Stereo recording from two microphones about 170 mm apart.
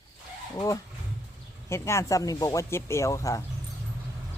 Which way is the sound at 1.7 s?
15° left (ahead or behind).